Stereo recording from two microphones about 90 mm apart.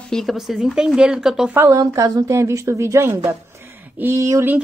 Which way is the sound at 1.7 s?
40° right (ahead or behind).